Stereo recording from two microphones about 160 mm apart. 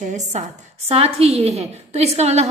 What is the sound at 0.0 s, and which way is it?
A woman's voice, 50° right (ahead or behind).